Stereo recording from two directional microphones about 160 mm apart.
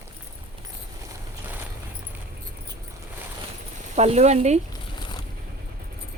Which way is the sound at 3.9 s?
45° right (ahead or behind).